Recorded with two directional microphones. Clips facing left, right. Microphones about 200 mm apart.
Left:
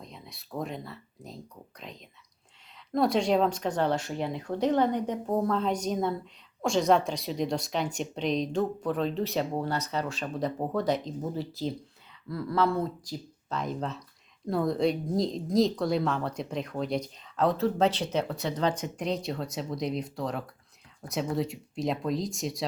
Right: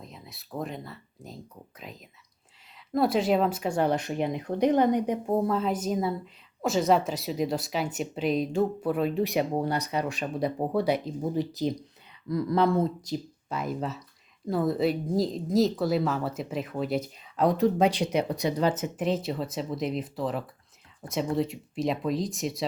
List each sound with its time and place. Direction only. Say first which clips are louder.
0.0 s speech: even; centre (ahead or behind); by 13.1 s 20° right (ahead or behind)
13.5 s speech: right 1 dB; 5° right (ahead or behind)